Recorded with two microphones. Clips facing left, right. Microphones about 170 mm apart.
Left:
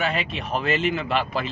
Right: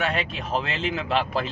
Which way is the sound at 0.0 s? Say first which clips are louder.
Left 1 dB; centre (ahead or behind).